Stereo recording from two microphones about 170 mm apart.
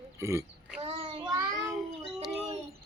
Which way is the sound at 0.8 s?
35° right (ahead or behind).